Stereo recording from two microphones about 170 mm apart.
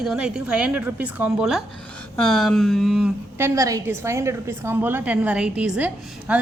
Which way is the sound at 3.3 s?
15° right (ahead or behind).